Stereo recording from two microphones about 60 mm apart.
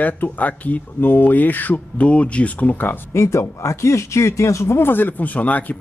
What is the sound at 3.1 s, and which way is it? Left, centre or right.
Speech, left.